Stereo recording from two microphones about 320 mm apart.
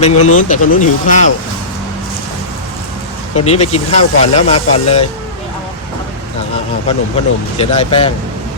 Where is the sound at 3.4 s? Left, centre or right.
Centre.